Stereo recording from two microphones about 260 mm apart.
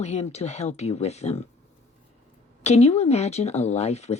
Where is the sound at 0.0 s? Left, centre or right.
Left.